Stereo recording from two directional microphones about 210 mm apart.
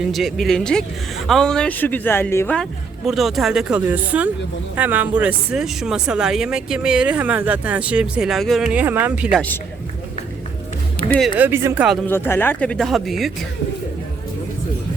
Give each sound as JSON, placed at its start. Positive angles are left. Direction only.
{"t": 0.1, "sound": "speech", "side_deg": 0}
{"t": 11.0, "sound": "music", "side_deg": 25}
{"t": 11.3, "sound": "speech", "side_deg": -10}
{"t": 12.0, "sound": "speech", "side_deg": 10}